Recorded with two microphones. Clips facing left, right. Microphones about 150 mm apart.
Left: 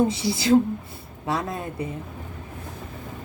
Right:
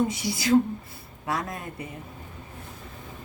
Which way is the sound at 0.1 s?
30° left (ahead or behind).